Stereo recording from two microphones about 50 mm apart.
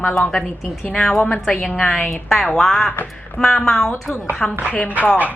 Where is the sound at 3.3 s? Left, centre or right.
Centre.